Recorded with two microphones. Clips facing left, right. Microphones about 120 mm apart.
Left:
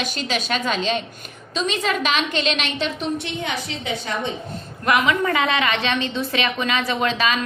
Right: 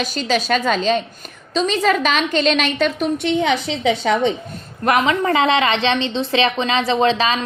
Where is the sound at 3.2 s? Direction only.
90° right.